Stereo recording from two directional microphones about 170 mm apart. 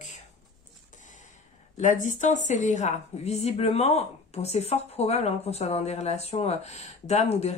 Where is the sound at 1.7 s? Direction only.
45° left (ahead or behind).